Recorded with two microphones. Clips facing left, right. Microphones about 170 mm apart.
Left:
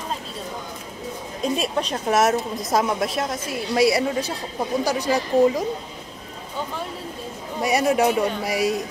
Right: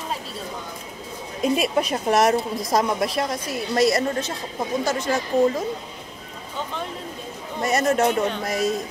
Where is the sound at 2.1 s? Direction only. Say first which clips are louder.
Even; centre (ahead or behind).